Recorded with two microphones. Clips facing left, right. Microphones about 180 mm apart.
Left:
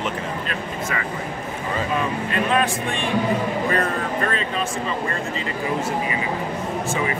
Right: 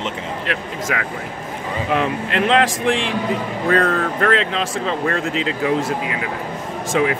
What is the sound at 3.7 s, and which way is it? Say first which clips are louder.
Speech: right 5 dB; 80° right.